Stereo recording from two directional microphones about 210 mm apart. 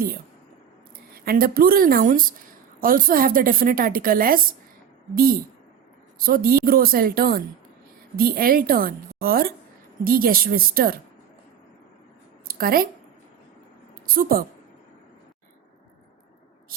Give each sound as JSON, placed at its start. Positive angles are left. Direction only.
{"t": 1.1, "sound": "a woman's voice", "side_deg": -45}
{"t": 12.5, "sound": "a woman's voice", "side_deg": -45}
{"t": 14.1, "sound": "a woman's voice", "side_deg": -45}